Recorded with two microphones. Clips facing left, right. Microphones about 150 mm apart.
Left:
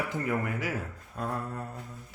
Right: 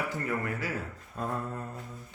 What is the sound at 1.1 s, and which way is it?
Speech, centre (ahead or behind).